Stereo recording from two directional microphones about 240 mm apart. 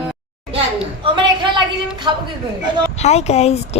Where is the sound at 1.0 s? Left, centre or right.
Centre.